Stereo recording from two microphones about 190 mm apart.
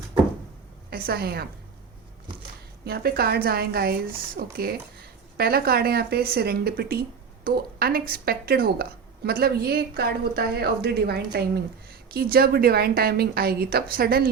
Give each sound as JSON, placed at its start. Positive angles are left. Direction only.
{"t": 0.9, "sound": "a woman's voice", "side_deg": -55}
{"t": 2.8, "sound": "a woman's voice", "side_deg": -55}